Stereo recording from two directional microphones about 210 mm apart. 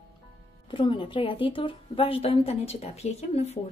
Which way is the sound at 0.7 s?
20° left (ahead or behind).